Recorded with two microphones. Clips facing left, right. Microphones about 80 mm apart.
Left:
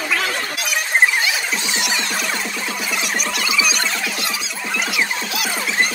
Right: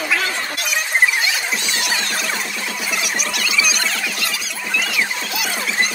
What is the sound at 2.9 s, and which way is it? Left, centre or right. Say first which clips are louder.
Music: even; centre.